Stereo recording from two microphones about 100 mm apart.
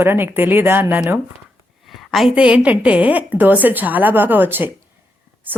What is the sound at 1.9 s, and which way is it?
A woman's voice, centre (ahead or behind).